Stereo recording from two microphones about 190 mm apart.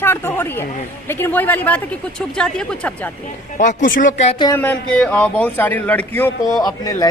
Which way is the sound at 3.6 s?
40° left (ahead or behind).